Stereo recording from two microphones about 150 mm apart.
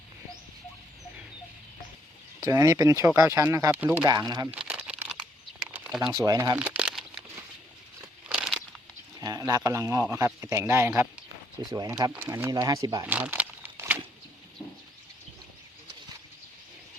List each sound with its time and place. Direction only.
2.5 s a man's voice: 20° right (ahead or behind)
4.0 s a man's voice: 25° right (ahead or behind)
4.5 s crumpling: 10° right (ahead or behind)
5.7 s a sound: 10° right (ahead or behind)
6.0 s a man's voice: 25° right (ahead or behind)
6.6 s crumpling: 5° right (ahead or behind)
8.3 s crumpling: 5° right (ahead or behind)
9.2 s a man's voice: 25° right (ahead or behind)
11.6 s a man's voice: 25° right (ahead or behind)
12.1 s a man's voice: 15° right (ahead or behind)
13.1 s a sound: 10° right (ahead or behind)